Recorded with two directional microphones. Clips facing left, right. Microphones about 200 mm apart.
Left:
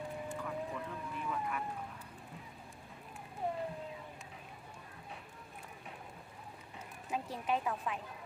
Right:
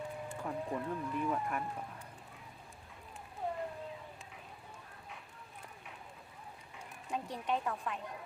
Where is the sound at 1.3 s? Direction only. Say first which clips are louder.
Left 1 dB; 45° right (ahead or behind).